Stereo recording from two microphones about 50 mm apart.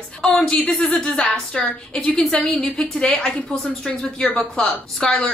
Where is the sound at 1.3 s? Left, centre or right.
Left.